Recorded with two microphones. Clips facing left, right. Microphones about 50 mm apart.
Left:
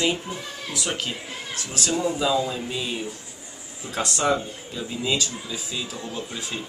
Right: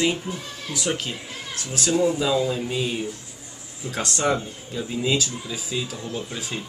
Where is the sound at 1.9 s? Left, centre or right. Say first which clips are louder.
Right 2 dB; centre.